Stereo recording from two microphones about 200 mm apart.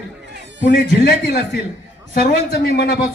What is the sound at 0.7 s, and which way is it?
Speech, 55° left (ahead or behind).